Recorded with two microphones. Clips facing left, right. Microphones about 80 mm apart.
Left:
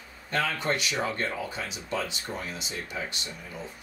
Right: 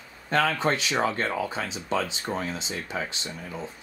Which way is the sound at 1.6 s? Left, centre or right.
Right.